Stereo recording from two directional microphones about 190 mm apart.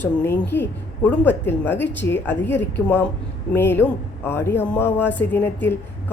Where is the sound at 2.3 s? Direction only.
65° left (ahead or behind).